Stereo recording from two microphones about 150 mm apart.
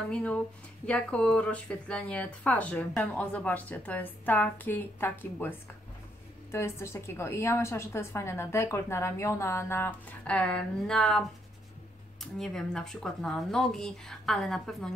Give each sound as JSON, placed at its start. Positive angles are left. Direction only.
{"t": 0.1, "sound": "a woman's voice", "side_deg": 10}
{"t": 6.5, "sound": "a woman's voice", "side_deg": 15}